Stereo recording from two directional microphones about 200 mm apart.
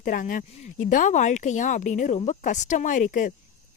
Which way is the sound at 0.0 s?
45° left (ahead or behind).